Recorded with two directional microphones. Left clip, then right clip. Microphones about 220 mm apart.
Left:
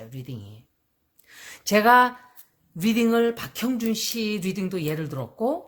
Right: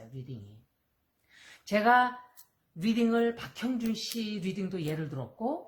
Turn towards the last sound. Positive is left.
turn(degrees=40)  # may be behind; listen again after turning